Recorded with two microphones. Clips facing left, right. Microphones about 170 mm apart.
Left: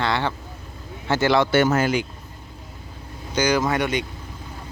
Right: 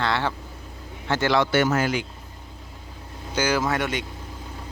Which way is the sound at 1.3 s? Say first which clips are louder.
Left 2 dB; 25° left (ahead or behind).